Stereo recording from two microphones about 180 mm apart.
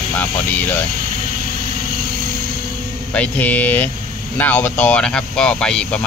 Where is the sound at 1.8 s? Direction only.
55° right (ahead or behind).